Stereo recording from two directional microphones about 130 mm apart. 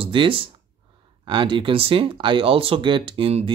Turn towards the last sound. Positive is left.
turn(degrees=-45)  # may be behind; listen again after turning